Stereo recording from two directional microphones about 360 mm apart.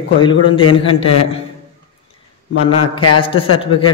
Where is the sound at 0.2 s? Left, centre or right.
Centre.